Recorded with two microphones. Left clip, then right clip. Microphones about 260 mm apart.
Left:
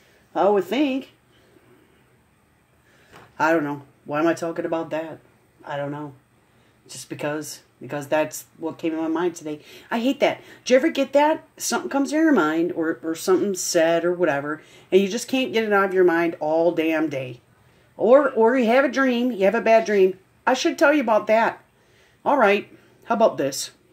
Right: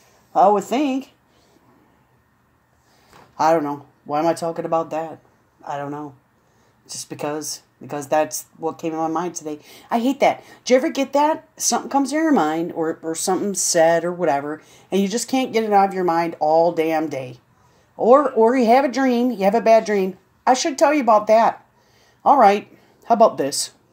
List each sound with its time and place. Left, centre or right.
0.4 s a woman's voice: right
3.3 s a woman's voice: right